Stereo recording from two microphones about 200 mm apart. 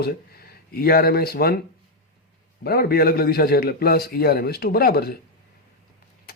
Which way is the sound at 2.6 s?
50° left (ahead or behind).